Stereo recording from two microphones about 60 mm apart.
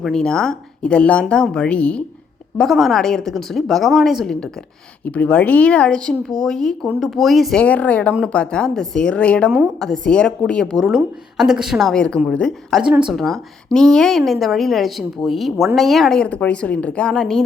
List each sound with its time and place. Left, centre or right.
0.1 s speech: centre
2.6 s a woman's voice: centre
5.0 s a woman's voice: left; by 7.5 s centre
7.5 s speech: left
9.1 s speech: left
9.8 s speech: centre
10.8 s a woman's voice: centre
11.9 s speech: centre
12.8 s speech: centre
13.1 s a woman's voice: centre
16.1 s speech: centre